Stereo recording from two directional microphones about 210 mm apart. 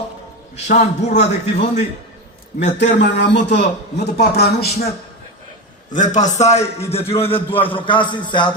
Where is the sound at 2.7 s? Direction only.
55° left (ahead or behind).